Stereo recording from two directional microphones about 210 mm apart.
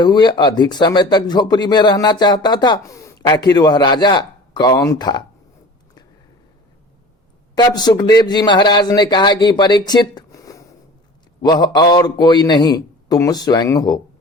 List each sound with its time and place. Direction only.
0.0 s speech: 20° left (ahead or behind)
7.5 s speech: 20° left (ahead or behind)